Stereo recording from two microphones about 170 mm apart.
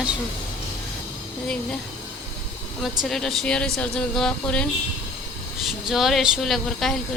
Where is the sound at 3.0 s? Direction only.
Centre (ahead or behind).